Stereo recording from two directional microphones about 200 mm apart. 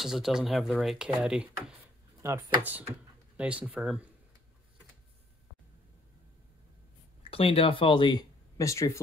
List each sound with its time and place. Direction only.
0.0 s speech: centre (ahead or behind)
3.3 s speech: 5° right (ahead or behind)
7.2 s speech: 30° left (ahead or behind)